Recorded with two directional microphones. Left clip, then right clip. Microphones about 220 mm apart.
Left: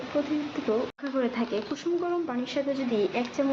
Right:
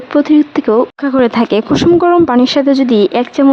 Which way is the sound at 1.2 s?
50° right (ahead or behind).